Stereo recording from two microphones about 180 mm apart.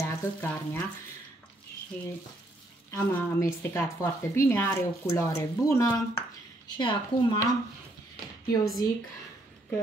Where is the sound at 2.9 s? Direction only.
10° left (ahead or behind).